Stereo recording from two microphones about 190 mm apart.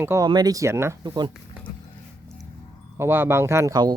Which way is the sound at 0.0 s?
15° right (ahead or behind).